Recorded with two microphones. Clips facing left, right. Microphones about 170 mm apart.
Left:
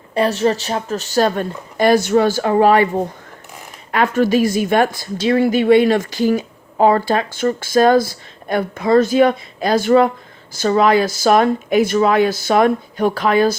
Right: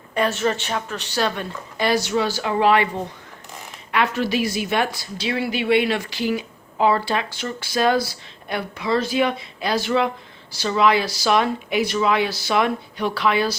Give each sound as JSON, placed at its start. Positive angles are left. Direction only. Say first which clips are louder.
{"t": 0.1, "sound": "a woman's voice", "louder": "left 5 dB", "side_deg": 35}